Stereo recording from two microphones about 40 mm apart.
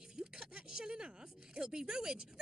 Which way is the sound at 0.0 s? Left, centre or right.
Centre.